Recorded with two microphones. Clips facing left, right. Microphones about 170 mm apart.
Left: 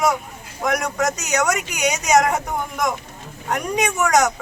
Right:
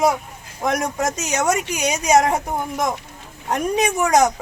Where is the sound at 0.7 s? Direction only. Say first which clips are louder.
Even; 25° right (ahead or behind).